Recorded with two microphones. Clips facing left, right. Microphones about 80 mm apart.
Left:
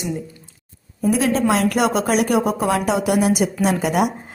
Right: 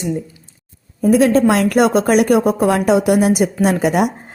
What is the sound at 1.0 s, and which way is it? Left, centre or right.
A woman's voice, right.